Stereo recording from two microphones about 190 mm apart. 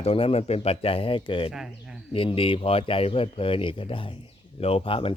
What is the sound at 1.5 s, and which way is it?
Speech, 5° right (ahead or behind).